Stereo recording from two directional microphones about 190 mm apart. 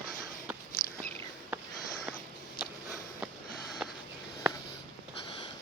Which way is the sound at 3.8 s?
5° right (ahead or behind).